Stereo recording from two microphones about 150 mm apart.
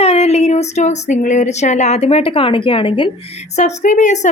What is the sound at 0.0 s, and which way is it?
Speech, 45° left (ahead or behind).